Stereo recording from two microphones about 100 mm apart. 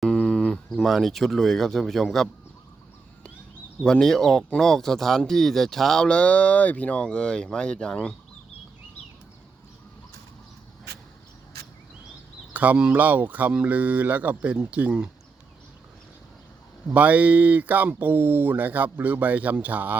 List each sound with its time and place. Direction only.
0.0 s a sound: 5° left (ahead or behind)
0.9 s speech: centre (ahead or behind)
3.8 s speech: 5° left (ahead or behind)
12.5 s speech: 10° right (ahead or behind)
16.9 s speech: 15° right (ahead or behind)